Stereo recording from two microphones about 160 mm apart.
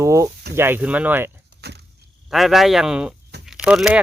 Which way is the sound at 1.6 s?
90° right.